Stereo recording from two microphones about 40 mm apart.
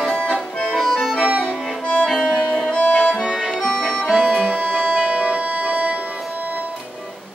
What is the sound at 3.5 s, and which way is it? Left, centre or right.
Accordion, centre.